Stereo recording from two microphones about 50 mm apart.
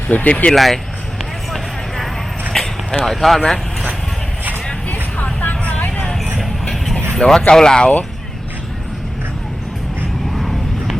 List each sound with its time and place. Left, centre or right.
0.1 s speech: left
0.5 s speech: centre
2.5 s a sound: centre
3.0 s speech: centre
5.1 s vehicle: left
6.9 s vehicle: centre
7.4 s speech: centre
10.3 s vehicle: centre